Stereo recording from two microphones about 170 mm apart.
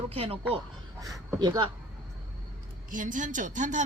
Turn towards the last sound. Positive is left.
turn(degrees=-45)  # may be behind; listen again after turning